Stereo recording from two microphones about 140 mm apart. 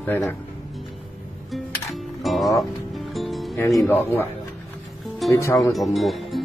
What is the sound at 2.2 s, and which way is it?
Music, centre (ahead or behind).